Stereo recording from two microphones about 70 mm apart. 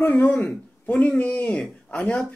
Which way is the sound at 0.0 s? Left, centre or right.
Left.